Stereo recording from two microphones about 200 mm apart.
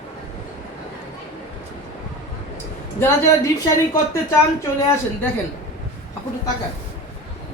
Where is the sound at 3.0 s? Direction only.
15° left (ahead or behind).